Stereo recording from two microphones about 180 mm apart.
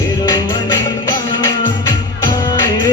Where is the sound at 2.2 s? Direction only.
25° left (ahead or behind).